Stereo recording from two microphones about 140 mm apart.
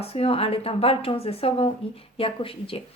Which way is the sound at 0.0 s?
45° left (ahead or behind).